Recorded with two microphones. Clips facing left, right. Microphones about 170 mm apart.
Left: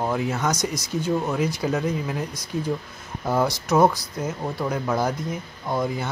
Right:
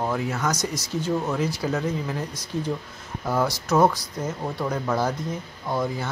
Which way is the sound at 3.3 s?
20° left (ahead or behind).